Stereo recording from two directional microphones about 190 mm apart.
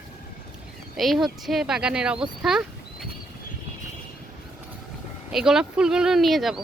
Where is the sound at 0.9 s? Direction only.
Centre (ahead or behind).